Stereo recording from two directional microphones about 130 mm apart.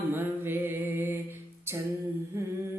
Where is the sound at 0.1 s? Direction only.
15° right (ahead or behind).